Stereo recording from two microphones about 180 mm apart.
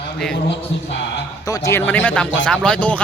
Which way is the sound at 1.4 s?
20° left (ahead or behind).